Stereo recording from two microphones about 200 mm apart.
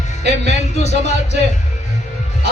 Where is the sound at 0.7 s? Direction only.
35° left (ahead or behind).